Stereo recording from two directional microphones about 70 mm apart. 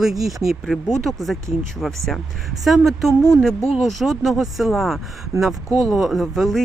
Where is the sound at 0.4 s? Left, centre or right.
Centre.